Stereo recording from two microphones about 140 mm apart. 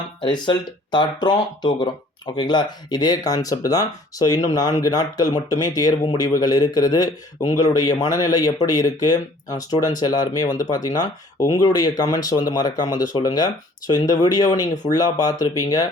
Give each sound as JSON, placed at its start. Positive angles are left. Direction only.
{"t": 0.2, "sound": "speech", "side_deg": 35}